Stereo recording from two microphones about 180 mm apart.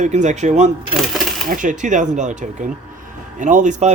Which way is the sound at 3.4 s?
45° right (ahead or behind).